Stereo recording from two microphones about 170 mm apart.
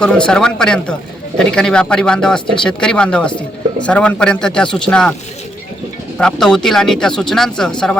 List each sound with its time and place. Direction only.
0.0 s speech: 5° left (ahead or behind)
6.1 s speech: 5° left (ahead or behind)